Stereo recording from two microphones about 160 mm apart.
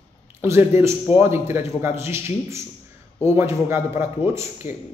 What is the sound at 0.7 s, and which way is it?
A man's voice, 15° right (ahead or behind).